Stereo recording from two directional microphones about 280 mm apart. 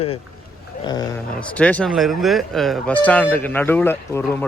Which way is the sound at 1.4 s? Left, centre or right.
Centre.